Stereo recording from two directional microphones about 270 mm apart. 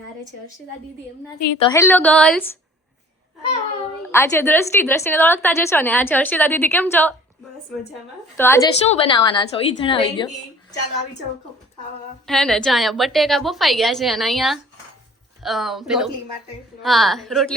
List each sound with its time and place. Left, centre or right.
1.5 s a woman's voice: centre
4.1 s a woman's voice: centre
8.4 s a woman's voice: centre
12.2 s a woman's voice: centre